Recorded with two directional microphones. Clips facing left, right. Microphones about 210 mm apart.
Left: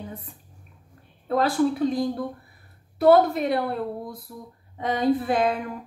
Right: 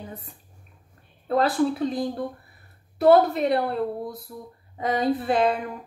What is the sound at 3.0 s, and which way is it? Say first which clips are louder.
Speech: even; centre (ahead or behind).